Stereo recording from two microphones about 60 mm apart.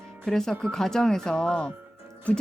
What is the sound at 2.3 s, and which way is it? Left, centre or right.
Music, left.